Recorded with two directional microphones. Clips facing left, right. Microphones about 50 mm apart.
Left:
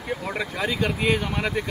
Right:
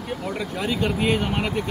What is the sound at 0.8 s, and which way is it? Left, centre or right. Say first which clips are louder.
Speech: right 1 dB; left.